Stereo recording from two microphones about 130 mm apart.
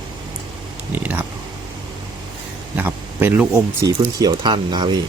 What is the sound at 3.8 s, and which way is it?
Speech, 30° right (ahead or behind).